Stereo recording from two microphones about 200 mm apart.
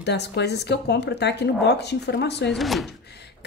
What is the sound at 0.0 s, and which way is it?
Speech, 55° left (ahead or behind).